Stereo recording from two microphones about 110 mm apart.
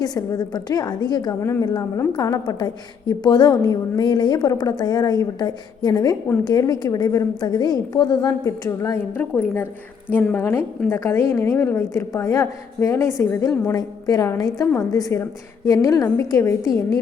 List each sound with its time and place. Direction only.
0.0 s a woman's voice: 35° left (ahead or behind)
9.1 s a woman's voice: 15° left (ahead or behind)